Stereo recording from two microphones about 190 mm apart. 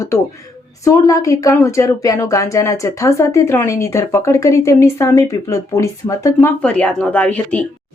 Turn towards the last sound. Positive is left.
turn(degrees=5)  # may be behind; listen again after turning